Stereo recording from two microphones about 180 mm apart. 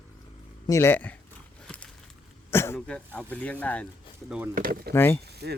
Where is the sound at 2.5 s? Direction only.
15° left (ahead or behind).